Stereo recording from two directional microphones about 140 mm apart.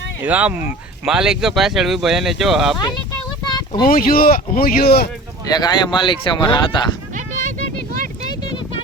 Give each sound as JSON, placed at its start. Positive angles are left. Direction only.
{"t": 0.3, "sound": "speech", "side_deg": -10}
{"t": 3.8, "sound": "speech", "side_deg": 90}
{"t": 5.5, "sound": "speech", "side_deg": 30}